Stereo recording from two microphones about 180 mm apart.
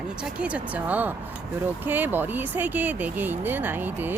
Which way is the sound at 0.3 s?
5° right (ahead or behind).